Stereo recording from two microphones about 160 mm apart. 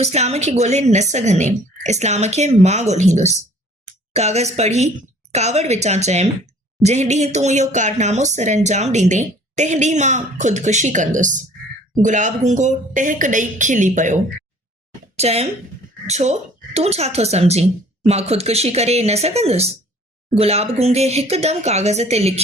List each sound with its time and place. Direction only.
0.0 s a woman's voice: 45° right (ahead or behind)